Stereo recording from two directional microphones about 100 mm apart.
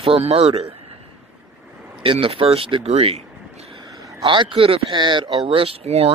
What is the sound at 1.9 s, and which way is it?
Speech, 60° right (ahead or behind).